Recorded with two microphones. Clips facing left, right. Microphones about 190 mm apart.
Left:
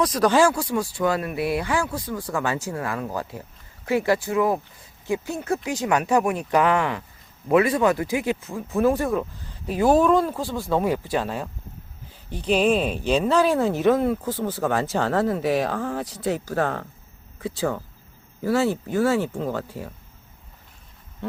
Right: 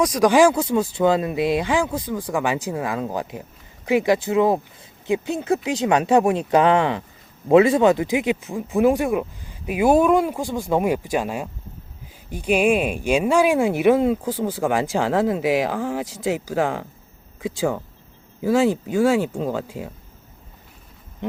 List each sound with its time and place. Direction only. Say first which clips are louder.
0.0 s speech: right 3 dB; 10° right (ahead or behind)